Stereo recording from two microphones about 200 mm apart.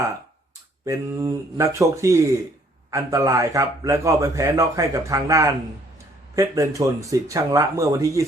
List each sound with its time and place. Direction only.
0.9 s a man's voice: 15° right (ahead or behind)